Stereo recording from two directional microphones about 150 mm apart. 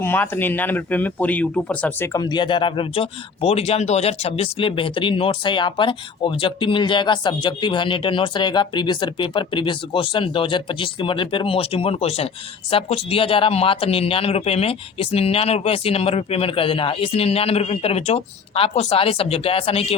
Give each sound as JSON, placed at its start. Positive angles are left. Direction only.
{"t": 0.0, "sound": "speech", "side_deg": 15}
{"t": 2.1, "sound": "speech", "side_deg": 30}